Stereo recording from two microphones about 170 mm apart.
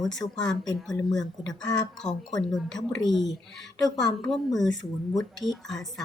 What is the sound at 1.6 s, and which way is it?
Speech, 25° left (ahead or behind).